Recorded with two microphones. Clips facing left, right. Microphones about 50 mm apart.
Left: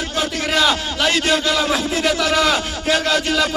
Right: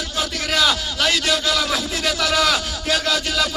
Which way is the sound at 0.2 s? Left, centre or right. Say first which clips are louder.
Left 2 dB; left.